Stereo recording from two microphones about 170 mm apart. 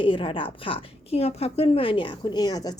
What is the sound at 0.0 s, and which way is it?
A woman's voice, 30° left (ahead or behind).